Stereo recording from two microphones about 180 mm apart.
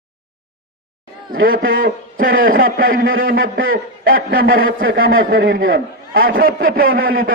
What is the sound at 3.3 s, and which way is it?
Speech, 90° right.